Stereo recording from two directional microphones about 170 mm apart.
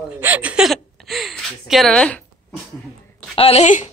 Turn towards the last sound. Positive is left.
turn(degrees=40)  # may be behind; listen again after turning